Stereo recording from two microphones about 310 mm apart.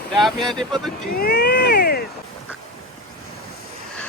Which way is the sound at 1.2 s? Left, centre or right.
Left.